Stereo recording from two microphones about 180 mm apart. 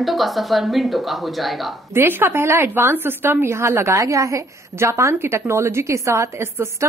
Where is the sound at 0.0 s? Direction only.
Centre (ahead or behind).